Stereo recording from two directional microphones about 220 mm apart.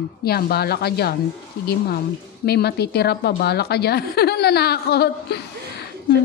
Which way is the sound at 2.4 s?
50° left (ahead or behind).